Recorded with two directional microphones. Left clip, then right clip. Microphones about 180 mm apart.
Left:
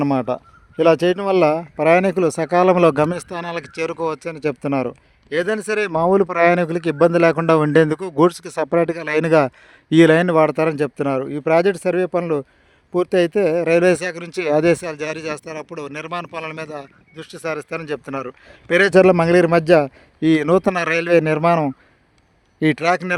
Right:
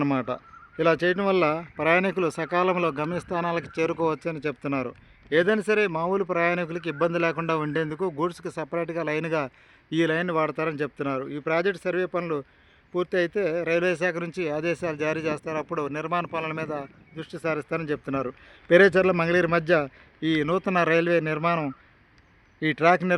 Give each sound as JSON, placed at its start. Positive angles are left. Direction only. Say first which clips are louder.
{"t": 0.0, "sound": "a man's voice", "louder": "left 7 dB", "side_deg": 40}